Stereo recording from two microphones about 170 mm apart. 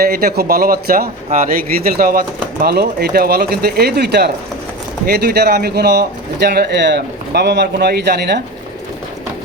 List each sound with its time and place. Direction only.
0.0 s a man's voice: 65° right (ahead or behind)